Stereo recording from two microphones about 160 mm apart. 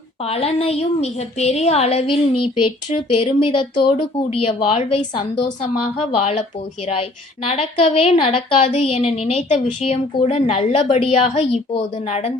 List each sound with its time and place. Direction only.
0.3 s a woman's voice: 40° left (ahead or behind)
7.5 s a woman's voice: 35° left (ahead or behind)